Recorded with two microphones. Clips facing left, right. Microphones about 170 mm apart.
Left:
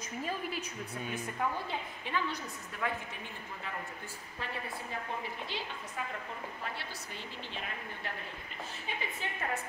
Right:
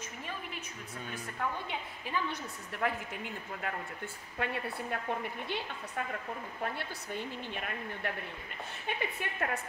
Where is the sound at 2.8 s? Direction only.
45° right (ahead or behind).